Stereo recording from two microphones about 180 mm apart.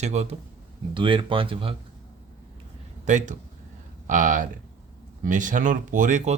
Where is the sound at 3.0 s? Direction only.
45° right (ahead or behind).